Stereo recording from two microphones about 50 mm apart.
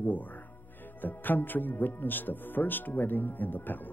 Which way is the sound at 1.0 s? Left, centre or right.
Left.